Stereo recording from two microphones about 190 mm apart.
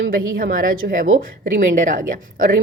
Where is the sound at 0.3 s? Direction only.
50° right (ahead or behind).